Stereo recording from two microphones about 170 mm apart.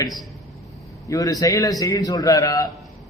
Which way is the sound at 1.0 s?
20° left (ahead or behind).